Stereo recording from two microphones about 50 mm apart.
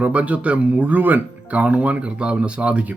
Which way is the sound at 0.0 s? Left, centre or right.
Right.